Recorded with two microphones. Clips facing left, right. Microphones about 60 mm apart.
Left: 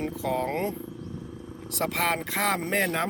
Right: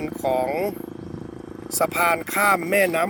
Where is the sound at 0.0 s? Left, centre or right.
Right.